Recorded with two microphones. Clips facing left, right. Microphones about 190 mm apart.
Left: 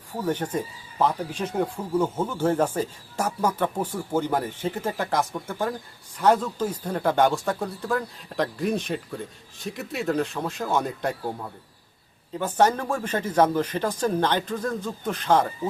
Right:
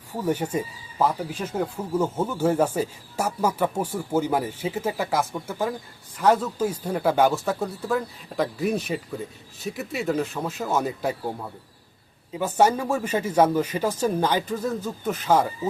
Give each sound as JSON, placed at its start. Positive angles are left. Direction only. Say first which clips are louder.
{"t": 0.3, "sound": "speech", "louder": "right 2 dB", "side_deg": -10}